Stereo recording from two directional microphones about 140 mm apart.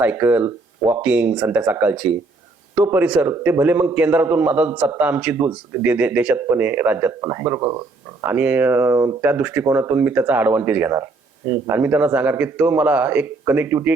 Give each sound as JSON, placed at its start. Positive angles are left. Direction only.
{"t": 0.0, "sound": "speech", "side_deg": -10}